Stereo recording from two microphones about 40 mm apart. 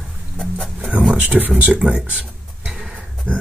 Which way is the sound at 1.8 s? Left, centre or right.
Right.